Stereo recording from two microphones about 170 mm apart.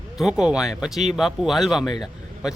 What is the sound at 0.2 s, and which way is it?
Speech, 5° right (ahead or behind).